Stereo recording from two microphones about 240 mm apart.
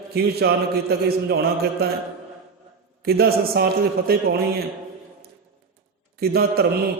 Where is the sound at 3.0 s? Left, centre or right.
Right.